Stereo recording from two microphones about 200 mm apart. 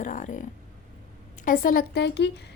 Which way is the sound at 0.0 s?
40° left (ahead or behind).